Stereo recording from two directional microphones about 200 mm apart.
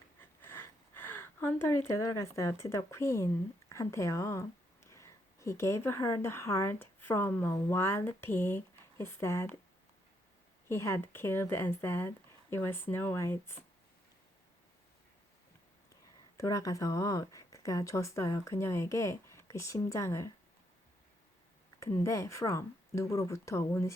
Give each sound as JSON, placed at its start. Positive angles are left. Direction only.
{"t": 0.2, "sound": "a sound", "side_deg": 10}
{"t": 3.7, "sound": "speech", "side_deg": 15}
{"t": 10.7, "sound": "speech", "side_deg": 15}
{"t": 16.4, "sound": "speech", "side_deg": 15}
{"t": 22.0, "sound": "speech", "side_deg": 15}